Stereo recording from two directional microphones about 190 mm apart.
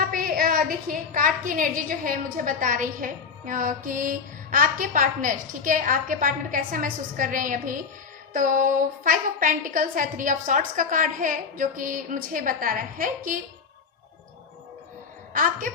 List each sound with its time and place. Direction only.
0.0 s a woman's voice: 50° right (ahead or behind)
15.3 s a woman's voice: 45° right (ahead or behind)